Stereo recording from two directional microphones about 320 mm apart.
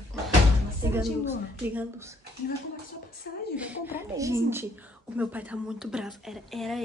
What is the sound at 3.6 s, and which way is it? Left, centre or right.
A woman's voice, centre.